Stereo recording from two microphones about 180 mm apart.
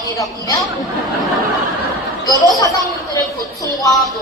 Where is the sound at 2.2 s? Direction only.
20° left (ahead or behind).